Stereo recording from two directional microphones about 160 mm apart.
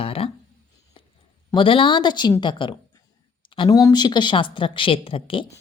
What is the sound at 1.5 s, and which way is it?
A woman's voice, 35° left (ahead or behind).